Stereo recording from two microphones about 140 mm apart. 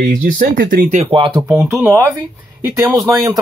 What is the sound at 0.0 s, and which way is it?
Speech, 80° right.